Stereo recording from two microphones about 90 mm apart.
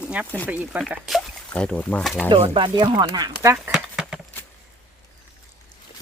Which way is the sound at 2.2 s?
80° right.